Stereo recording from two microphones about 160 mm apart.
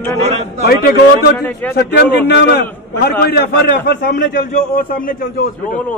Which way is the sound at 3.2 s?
70° left (ahead or behind).